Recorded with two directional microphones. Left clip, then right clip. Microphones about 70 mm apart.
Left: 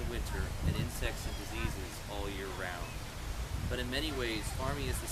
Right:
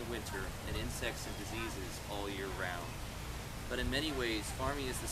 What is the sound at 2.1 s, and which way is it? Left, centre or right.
Speech, centre.